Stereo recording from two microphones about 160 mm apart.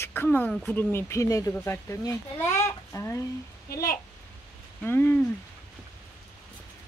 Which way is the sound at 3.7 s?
75° left (ahead or behind).